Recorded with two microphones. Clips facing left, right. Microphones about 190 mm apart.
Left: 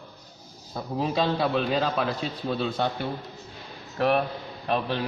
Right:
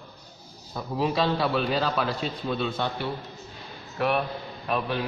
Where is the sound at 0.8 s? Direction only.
30° left (ahead or behind).